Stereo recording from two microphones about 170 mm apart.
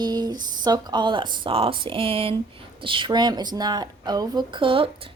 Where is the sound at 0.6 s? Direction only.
25° right (ahead or behind).